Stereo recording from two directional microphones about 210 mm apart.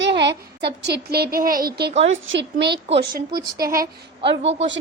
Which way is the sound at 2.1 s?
60° right (ahead or behind).